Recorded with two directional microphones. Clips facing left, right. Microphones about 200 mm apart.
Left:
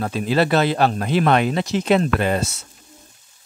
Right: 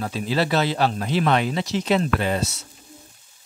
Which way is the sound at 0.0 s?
55° left (ahead or behind).